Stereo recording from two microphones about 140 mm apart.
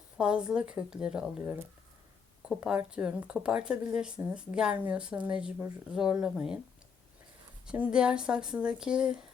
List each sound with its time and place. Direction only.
0.2 s a woman's voice: 5° right (ahead or behind)
7.7 s a woman's voice: 5° right (ahead or behind)